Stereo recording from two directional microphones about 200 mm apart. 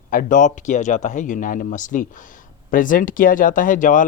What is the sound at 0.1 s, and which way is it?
Speech, 40° left (ahead or behind).